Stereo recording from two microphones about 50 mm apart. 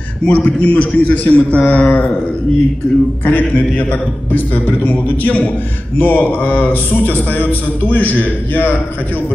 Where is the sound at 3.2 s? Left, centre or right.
Left.